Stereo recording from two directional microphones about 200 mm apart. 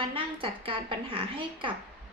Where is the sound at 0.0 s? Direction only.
25° right (ahead or behind).